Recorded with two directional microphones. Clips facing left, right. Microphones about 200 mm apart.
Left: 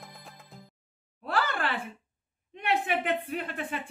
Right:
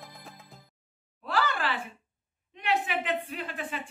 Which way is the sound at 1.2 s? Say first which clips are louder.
Even; 55° left (ahead or behind).